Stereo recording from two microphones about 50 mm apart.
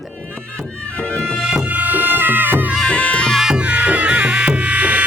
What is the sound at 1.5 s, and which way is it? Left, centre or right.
Music, right.